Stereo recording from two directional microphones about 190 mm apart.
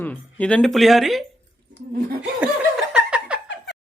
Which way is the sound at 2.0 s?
50° right (ahead or behind).